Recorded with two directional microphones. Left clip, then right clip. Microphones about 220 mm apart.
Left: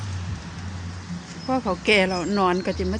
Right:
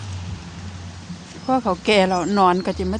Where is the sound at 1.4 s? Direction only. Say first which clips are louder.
Right 3 dB; 20° right (ahead or behind).